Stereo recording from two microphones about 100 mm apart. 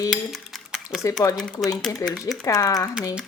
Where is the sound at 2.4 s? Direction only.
35° left (ahead or behind).